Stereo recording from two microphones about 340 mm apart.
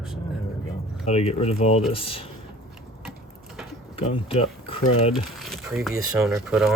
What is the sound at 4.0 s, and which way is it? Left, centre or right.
Speech, centre.